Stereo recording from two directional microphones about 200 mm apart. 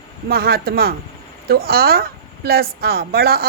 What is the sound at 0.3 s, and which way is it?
A woman's voice, 50° right (ahead or behind).